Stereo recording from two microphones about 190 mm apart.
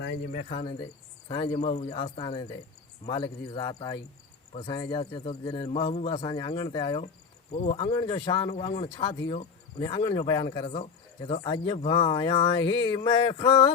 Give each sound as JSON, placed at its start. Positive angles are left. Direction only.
{"t": 0.3, "sound": "speech", "side_deg": 45}